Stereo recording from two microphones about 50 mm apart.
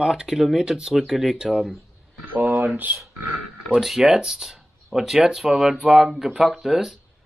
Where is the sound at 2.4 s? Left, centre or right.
Right.